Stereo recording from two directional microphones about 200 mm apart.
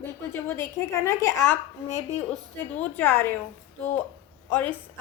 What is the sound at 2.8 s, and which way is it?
Speech, 10° left (ahead or behind).